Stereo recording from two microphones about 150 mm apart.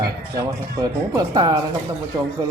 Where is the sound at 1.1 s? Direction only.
25° right (ahead or behind).